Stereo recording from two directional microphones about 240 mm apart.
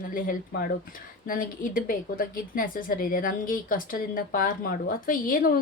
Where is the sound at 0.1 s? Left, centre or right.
Left.